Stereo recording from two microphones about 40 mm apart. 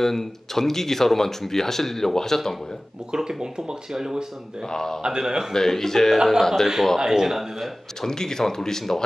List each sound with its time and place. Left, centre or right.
0.0 s speech: centre
3.1 s speech: centre
4.6 s speech: centre
5.0 s a man's voice: centre
5.5 s speech: centre
7.0 s speech: centre
7.6 s speech: centre